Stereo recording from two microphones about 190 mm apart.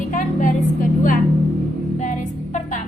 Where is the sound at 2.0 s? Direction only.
40° left (ahead or behind).